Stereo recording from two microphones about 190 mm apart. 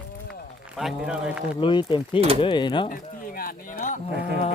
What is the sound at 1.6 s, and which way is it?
Speech, 25° left (ahead or behind).